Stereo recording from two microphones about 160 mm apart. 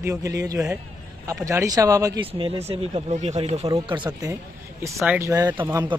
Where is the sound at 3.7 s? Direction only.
30° right (ahead or behind).